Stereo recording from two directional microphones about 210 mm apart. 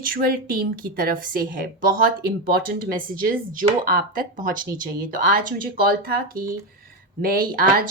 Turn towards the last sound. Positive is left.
turn(degrees=-45)  # may be behind; listen again after turning